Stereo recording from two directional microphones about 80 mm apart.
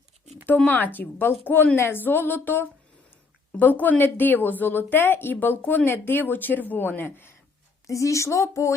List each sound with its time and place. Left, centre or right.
0.4 s speech: left
7.9 s speech: left